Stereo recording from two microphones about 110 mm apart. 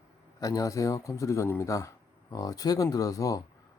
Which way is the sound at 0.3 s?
35° left (ahead or behind).